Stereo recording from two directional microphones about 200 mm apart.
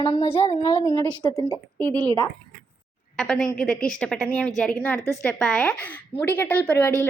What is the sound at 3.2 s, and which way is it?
A woman's voice, 5° left (ahead or behind).